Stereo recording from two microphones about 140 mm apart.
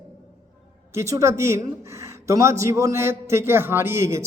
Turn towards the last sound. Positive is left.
turn(degrees=-20)  # may be behind; listen again after turning